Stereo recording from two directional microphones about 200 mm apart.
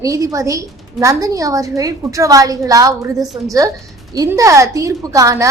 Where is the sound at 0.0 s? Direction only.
15° right (ahead or behind).